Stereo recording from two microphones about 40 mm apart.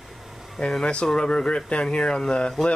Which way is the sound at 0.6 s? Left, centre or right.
Left.